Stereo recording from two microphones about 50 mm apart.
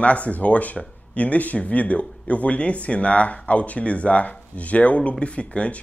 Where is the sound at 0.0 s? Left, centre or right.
Left.